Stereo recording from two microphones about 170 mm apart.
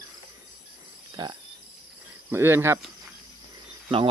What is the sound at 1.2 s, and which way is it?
Cricket, 25° right (ahead or behind).